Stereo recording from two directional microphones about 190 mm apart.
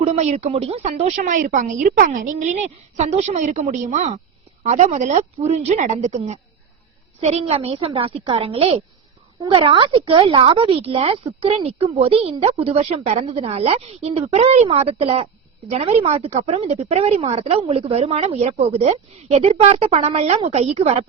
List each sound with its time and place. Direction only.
0.0 s a woman's voice: 35° right (ahead or behind)